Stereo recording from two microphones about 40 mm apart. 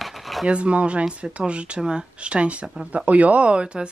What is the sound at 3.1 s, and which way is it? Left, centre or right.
Speech, right.